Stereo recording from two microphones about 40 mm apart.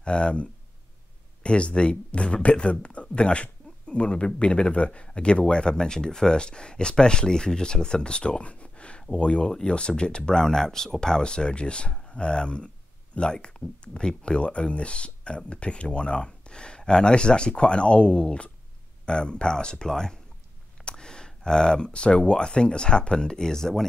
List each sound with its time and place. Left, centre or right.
0.0 s speech: left